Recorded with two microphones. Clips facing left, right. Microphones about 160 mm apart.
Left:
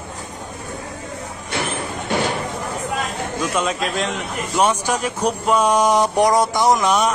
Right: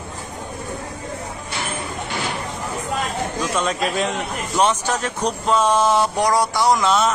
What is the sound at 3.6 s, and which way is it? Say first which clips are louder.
Speech: right 1 dB; centre (ahead or behind).